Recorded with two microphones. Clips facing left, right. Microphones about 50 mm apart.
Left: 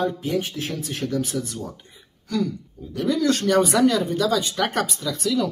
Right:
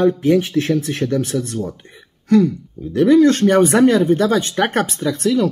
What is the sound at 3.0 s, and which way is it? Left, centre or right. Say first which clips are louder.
Speech: right 10 dB; right.